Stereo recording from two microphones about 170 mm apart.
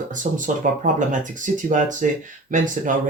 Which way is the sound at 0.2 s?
50° right (ahead or behind).